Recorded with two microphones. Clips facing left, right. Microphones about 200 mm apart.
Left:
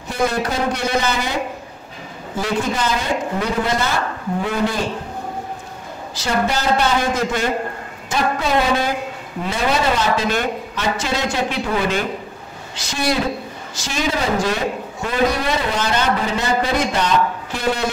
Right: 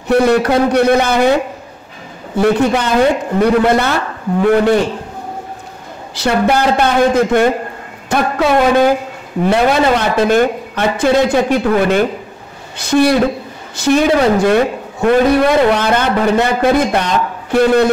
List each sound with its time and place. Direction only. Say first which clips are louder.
0.1 s a man's voice: right 10 dB; 65° right (ahead or behind)
2.3 s a man's voice: right 9 dB; 65° right (ahead or behind)
6.1 s a man's voice: right 7 dB; 60° right (ahead or behind)